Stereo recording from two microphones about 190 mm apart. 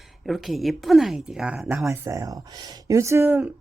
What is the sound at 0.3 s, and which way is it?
A woman's voice, centre (ahead or behind).